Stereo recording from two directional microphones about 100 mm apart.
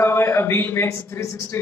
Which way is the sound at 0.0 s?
25° left (ahead or behind).